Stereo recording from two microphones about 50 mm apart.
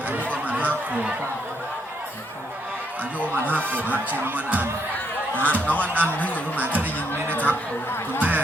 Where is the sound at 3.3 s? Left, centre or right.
Right.